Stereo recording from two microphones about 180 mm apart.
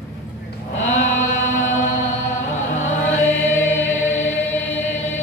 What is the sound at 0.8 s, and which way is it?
Sheep, 40° left (ahead or behind).